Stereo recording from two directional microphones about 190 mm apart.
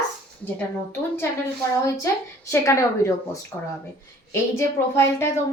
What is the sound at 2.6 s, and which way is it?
A woman's voice, 15° left (ahead or behind).